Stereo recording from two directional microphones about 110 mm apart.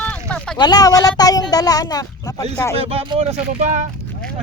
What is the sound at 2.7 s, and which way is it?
Speech, 65° right (ahead or behind).